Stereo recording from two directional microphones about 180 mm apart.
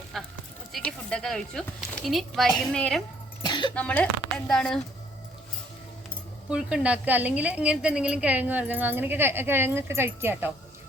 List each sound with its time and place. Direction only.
0.1 s speech: centre (ahead or behind)
2.5 s speech: 25° left (ahead or behind)
2.7 s speech: 5° left (ahead or behind)
3.4 s a sound: 25° left (ahead or behind)
3.8 s speech: 10° left (ahead or behind)
6.5 s a woman's voice: 5° right (ahead or behind)